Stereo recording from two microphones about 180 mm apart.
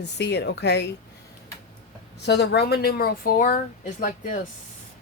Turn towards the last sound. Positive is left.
turn(degrees=45)  # may be behind; listen again after turning